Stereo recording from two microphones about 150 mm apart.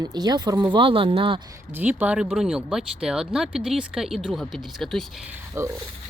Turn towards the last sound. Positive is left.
turn(degrees=-15)  # may be behind; listen again after turning